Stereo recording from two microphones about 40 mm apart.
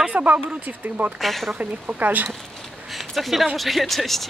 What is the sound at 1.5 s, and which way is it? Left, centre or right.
Speech, right.